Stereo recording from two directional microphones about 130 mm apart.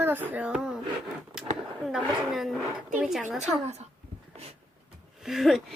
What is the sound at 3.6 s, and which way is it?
Speech, 60° right (ahead or behind).